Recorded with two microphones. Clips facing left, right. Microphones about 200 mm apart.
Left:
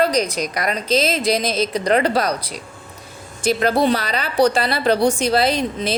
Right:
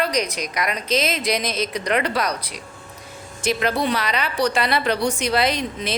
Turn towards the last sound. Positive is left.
turn(degrees=30)  # may be behind; listen again after turning